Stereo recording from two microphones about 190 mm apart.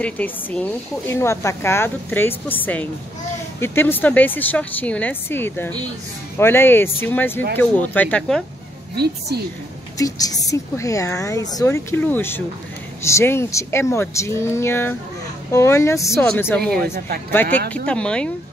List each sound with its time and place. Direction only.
0.0 s speech: 5° left (ahead or behind)
8.9 s a woman's voice: 60° right (ahead or behind)
9.9 s speech: 20° left (ahead or behind)